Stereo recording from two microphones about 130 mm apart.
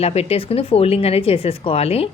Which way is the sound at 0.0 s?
50° left (ahead or behind).